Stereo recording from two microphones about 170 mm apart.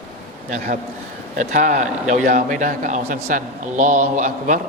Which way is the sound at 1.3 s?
45° right (ahead or behind).